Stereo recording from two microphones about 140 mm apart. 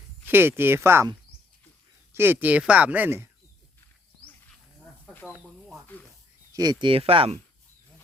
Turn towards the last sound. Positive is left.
turn(degrees=-40)  # may be behind; listen again after turning